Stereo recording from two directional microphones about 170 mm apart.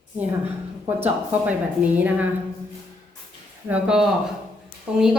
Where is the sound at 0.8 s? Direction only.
10° right (ahead or behind).